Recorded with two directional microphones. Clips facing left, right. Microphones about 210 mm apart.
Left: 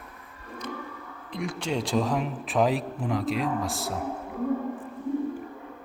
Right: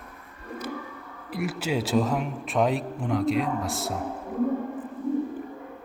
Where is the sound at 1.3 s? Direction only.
5° right (ahead or behind).